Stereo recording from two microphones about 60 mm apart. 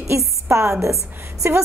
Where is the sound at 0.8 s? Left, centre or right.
Right.